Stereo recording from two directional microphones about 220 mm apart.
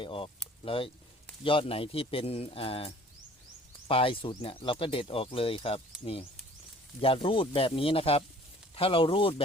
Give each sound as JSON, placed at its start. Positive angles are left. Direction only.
{"t": 0.0, "sound": "speech", "side_deg": 25}